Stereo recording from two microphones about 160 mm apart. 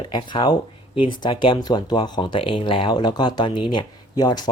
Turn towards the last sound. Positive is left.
turn(degrees=25)  # may be behind; listen again after turning